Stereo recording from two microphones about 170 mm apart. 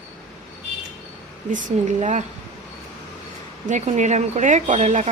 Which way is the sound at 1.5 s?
50° right (ahead or behind).